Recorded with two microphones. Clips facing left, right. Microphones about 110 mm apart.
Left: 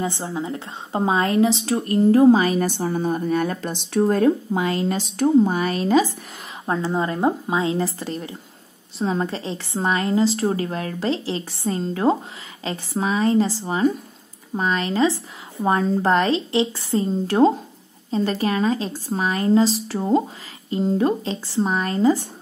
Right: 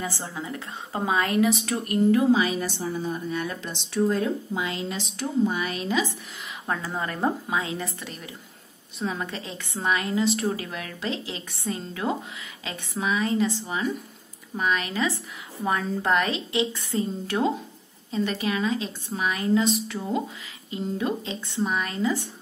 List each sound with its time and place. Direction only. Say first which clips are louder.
0.0 s a woman's voice: left 7 dB; 20° left (ahead or behind); by 2.7 s 45° left (ahead or behind)
2.8 s a woman's voice: left 7 dB; 60° left (ahead or behind); by 6.0 s 40° left (ahead or behind)
6.6 s a woman's voice: left 7 dB; 25° left (ahead or behind)